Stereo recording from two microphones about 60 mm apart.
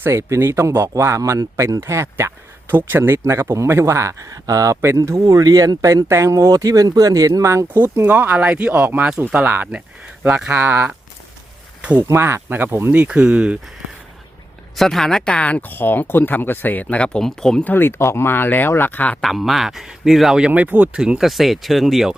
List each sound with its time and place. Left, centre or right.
0.0 s speech: right
2.6 s speech: right
4.8 s speech: right
6.1 s speech: right
7.4 s speech: right
8.0 s speech: right
11.9 s speech: right
13.1 s speech: right
14.8 s speech: centre
17.6 s speech: left
19.2 s speech: centre
20.5 s speech: right
20.9 s speech: centre
21.2 s speech: centre